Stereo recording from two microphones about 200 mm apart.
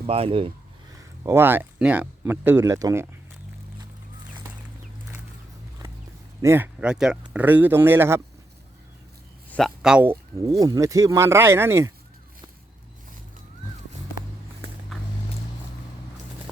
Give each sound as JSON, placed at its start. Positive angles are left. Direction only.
{"t": 0.0, "sound": "speech", "side_deg": -30}
{"t": 0.9, "sound": "speech", "side_deg": -15}
{"t": 6.4, "sound": "speech", "side_deg": -10}
{"t": 9.5, "sound": "speech", "side_deg": 0}